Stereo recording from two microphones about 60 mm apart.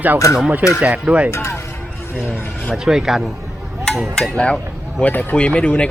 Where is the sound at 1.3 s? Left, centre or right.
Left.